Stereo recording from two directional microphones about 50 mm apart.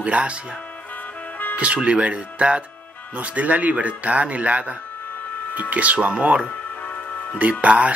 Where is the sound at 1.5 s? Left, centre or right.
Right.